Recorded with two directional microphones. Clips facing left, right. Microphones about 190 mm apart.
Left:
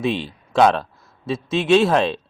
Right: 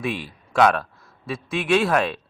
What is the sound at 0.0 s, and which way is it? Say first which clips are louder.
A man's voice: left 5 dB; 25° left (ahead or behind).